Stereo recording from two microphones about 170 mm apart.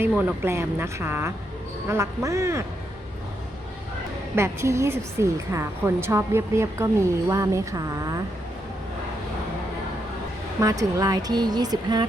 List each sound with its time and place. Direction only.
0.1 s a woman's voice: 5° right (ahead or behind)
4.4 s a woman's voice: 15° right (ahead or behind)
10.6 s speech: 20° right (ahead or behind)